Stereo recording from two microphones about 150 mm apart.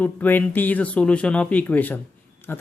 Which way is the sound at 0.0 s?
10° left (ahead or behind).